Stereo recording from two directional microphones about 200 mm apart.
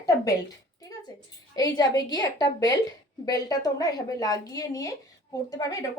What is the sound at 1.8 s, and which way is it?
A woman's voice, 20° left (ahead or behind).